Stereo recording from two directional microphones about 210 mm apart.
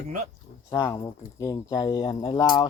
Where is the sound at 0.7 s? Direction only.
10° left (ahead or behind).